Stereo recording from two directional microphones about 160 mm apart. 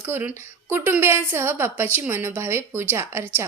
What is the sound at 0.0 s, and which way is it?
A woman's voice, 15° right (ahead or behind).